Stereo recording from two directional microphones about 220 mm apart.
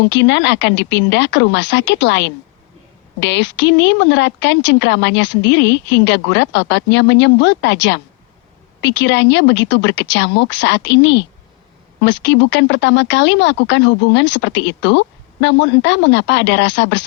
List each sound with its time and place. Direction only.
0.0 s speech: 55° left (ahead or behind)